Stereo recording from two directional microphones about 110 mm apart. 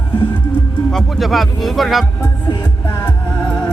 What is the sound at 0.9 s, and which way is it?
Speech, centre (ahead or behind).